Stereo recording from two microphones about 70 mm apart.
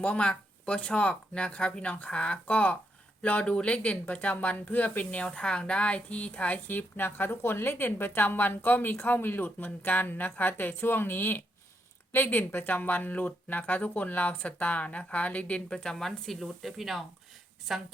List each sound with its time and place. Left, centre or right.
0.0 s speech: centre